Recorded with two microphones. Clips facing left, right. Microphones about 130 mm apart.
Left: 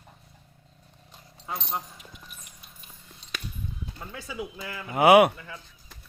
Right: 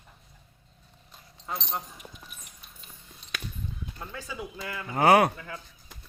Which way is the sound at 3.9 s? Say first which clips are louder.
Left 3 dB; 5° left (ahead or behind).